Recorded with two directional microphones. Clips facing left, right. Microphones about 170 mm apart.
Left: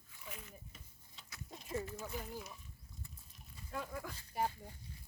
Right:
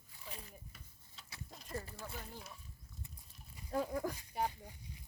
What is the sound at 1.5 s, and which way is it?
Horse, 5° left (ahead or behind).